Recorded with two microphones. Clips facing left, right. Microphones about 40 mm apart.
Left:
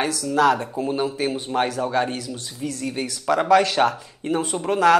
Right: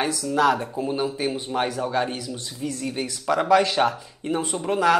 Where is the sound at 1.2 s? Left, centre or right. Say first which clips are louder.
Left 2 dB; centre.